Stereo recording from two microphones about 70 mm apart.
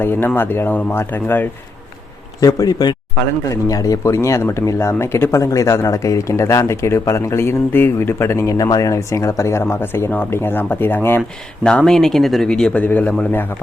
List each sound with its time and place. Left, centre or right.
0.0 s speech: left
2.4 s speech: left
3.5 s speech: left
8.5 s speech: left
11.6 s speech: centre
12.5 s a man's voice: centre